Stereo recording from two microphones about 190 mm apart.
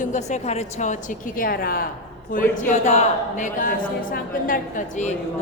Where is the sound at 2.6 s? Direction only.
40° left (ahead or behind).